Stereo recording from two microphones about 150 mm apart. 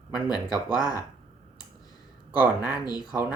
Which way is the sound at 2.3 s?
5° right (ahead or behind).